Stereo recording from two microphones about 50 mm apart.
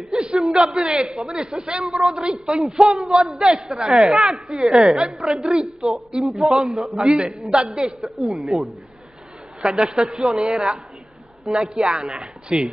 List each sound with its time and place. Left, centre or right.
0.1 s a sound: centre
0.5 s a man's voice: centre
0.9 s a man's voice: centre
2.1 s a man's voice: centre
4.0 s speech: centre
4.9 s a woman's voice: centre
6.2 s a man's voice: centre; by 10.8 s right
11.4 s a man's voice: centre
11.7 s a woman's voice: right